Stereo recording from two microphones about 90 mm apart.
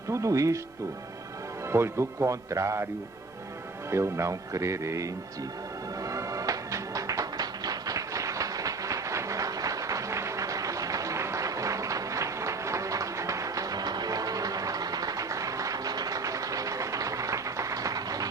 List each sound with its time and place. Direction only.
0.1 s speech: 35° right (ahead or behind)
1.6 s speech: 30° right (ahead or behind)
6.0 s music: 40° right (ahead or behind)